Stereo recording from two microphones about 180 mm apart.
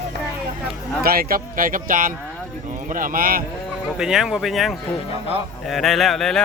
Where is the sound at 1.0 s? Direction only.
55° right (ahead or behind).